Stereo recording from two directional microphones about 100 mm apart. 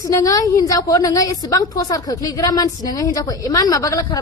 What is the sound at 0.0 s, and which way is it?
A woman's voice, 35° left (ahead or behind).